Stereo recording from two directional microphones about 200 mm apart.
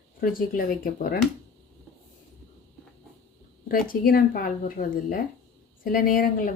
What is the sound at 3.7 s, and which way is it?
A woman's voice, 45° left (ahead or behind).